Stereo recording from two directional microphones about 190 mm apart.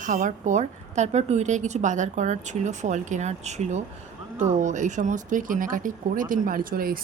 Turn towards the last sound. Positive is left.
turn(degrees=-50)  # may be behind; listen again after turning